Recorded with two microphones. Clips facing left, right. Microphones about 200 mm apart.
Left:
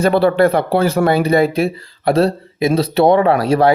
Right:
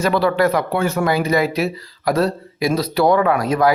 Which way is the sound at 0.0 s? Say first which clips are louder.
Left 4 dB; 30° left (ahead or behind).